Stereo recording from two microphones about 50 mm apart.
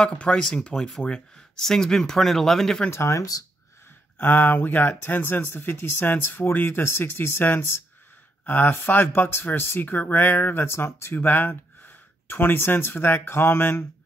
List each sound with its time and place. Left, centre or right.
0.1 s speech: left
0.7 s speech: centre
2.9 s speech: left
4.2 s speech: left
11.1 s speech: left